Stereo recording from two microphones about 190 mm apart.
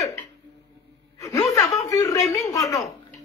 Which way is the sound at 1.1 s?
20° left (ahead or behind).